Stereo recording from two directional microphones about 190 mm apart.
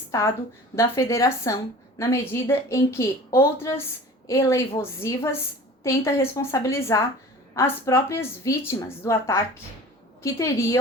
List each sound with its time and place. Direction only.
0.1 s a woman's voice: 15° left (ahead or behind)